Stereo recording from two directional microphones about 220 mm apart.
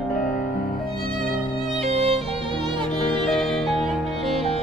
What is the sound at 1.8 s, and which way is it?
Music, 30° right (ahead or behind).